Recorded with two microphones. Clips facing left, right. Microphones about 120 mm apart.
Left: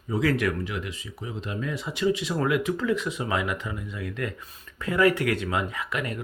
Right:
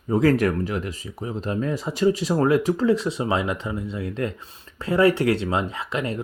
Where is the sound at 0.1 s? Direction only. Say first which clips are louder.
Right 6 dB; 40° right (ahead or behind).